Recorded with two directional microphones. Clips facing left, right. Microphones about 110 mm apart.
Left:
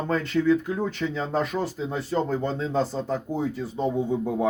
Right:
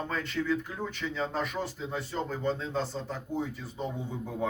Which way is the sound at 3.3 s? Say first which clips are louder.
Left 6 dB; 90° left.